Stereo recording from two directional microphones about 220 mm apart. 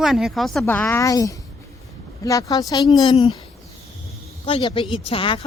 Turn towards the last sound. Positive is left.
turn(degrees=25)  # may be behind; listen again after turning